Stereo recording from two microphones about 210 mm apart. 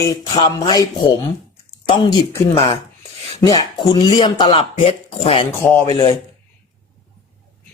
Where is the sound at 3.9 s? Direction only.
20° left (ahead or behind).